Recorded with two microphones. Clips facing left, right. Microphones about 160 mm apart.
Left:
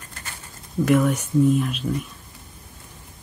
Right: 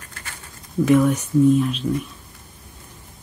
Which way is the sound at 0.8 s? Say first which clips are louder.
Right 3 dB; 5° left (ahead or behind).